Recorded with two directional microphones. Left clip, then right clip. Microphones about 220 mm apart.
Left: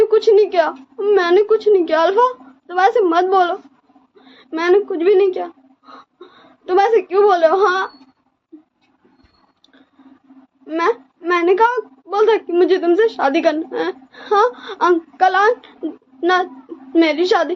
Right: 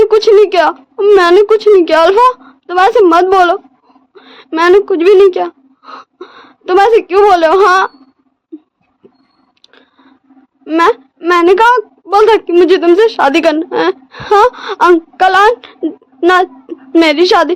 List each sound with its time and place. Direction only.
0.1 s a woman's voice: 55° right (ahead or behind)
10.7 s a woman's voice: 50° right (ahead or behind)